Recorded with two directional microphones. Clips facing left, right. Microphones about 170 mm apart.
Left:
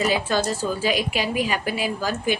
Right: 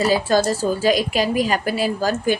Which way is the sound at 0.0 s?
40° right (ahead or behind).